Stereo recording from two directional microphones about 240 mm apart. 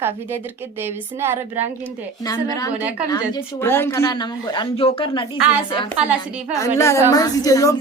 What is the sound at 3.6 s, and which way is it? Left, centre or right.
A woman's voice, centre.